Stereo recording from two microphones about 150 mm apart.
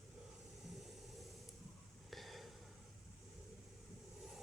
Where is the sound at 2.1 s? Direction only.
Centre (ahead or behind).